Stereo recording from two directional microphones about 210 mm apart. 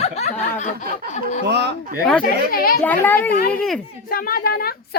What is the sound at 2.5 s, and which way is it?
Speech, 45° left (ahead or behind).